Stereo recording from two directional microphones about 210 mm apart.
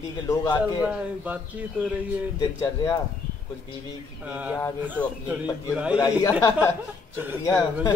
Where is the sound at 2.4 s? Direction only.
15° left (ahead or behind).